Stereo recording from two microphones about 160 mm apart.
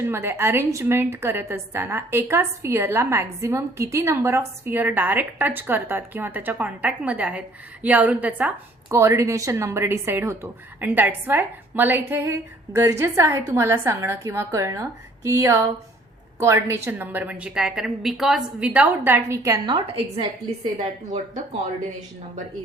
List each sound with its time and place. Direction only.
0.0 s a woman's voice: 15° right (ahead or behind)
20.7 s speech: 45° right (ahead or behind)